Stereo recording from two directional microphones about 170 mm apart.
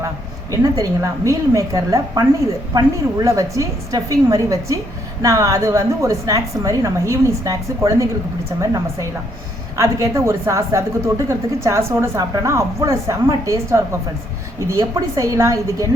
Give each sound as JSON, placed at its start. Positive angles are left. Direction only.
{"t": 0.5, "sound": "a woman's voice", "side_deg": -20}
{"t": 3.2, "sound": "a woman's voice", "side_deg": -20}